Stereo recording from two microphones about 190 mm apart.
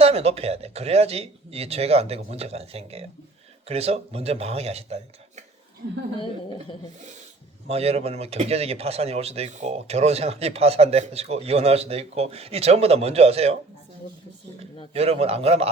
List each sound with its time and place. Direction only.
0.0 s speech: 30° right (ahead or behind)
7.7 s speech: 30° right (ahead or behind)
14.9 s speech: 30° right (ahead or behind)